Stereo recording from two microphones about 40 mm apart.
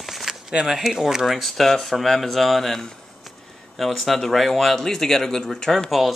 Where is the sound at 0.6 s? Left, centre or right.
Centre.